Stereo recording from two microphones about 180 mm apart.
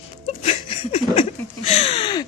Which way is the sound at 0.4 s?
35° left (ahead or behind).